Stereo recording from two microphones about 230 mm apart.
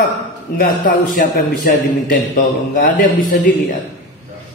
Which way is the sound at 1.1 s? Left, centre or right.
Left.